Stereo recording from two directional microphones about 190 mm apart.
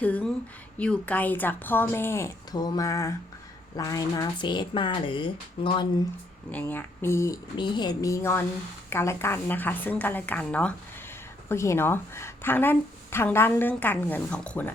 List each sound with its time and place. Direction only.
0.0 s a woman's voice: 5° left (ahead or behind); by 5.9 s 25° left (ahead or behind)
6.5 s a woman's voice: 10° left (ahead or behind)